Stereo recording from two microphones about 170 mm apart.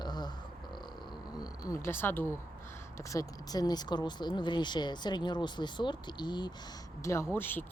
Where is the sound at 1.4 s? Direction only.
15° left (ahead or behind).